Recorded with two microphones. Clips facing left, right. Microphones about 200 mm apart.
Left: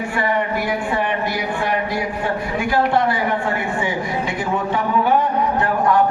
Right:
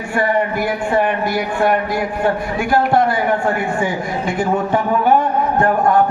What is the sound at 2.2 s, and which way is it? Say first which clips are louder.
A man's voice: right 3 dB; 50° right (ahead or behind).